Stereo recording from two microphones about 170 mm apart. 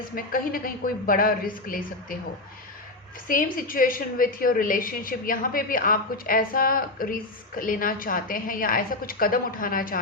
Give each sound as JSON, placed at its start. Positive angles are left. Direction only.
{"t": 0.2, "sound": "a woman's voice", "side_deg": 55}
{"t": 3.2, "sound": "a woman's voice", "side_deg": 55}